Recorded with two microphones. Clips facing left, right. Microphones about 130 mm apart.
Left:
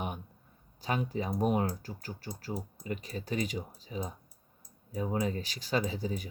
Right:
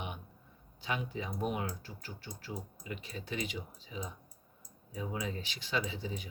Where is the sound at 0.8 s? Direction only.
40° left (ahead or behind).